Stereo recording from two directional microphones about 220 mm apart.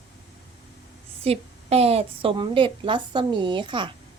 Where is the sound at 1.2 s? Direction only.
25° right (ahead or behind).